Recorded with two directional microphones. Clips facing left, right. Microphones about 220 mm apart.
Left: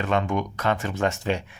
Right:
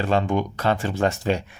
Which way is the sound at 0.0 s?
30° right (ahead or behind).